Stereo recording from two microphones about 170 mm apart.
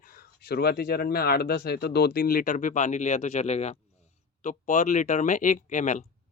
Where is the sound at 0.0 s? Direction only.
55° left (ahead or behind).